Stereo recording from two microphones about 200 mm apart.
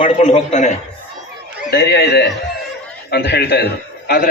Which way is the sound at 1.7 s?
55° left (ahead or behind).